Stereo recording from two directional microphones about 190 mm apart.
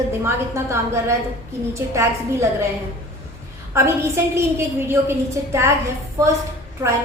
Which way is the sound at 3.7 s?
15° right (ahead or behind).